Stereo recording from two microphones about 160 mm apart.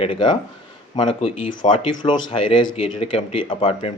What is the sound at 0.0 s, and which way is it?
Speech, 30° left (ahead or behind).